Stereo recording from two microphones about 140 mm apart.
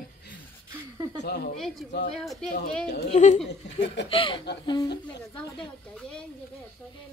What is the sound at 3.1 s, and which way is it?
Speech, 55° left (ahead or behind).